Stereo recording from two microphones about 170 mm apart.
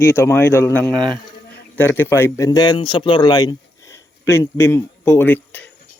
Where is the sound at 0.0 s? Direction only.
15° left (ahead or behind).